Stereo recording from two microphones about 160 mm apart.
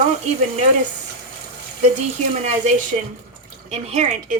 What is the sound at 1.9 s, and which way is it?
A woman's voice, 45° right (ahead or behind).